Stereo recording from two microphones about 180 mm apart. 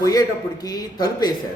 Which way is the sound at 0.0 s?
20° left (ahead or behind).